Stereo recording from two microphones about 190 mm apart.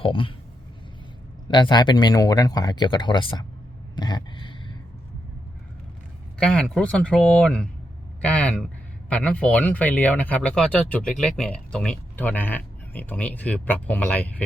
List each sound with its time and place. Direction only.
0.0 s speech: 25° left (ahead or behind)
1.5 s speech: 25° left (ahead or behind)
3.9 s a sound: 20° left (ahead or behind)
6.4 s speech: 5° left (ahead or behind)